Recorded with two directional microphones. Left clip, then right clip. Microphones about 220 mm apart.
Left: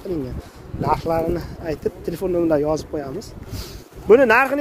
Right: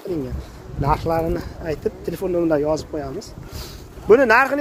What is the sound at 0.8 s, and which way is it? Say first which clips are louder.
Speech: even; 15° left (ahead or behind).